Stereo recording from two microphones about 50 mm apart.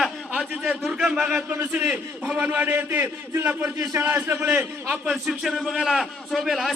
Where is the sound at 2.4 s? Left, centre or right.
Right.